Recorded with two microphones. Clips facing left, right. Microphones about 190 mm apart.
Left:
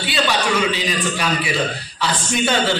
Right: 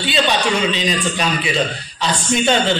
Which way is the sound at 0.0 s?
20° right (ahead or behind).